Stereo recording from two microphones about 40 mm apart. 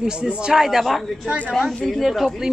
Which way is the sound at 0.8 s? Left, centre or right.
Centre.